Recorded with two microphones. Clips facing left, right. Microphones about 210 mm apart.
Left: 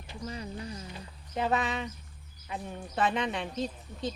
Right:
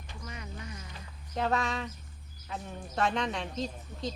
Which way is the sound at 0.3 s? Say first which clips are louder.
Left 5 dB; 30° left (ahead or behind).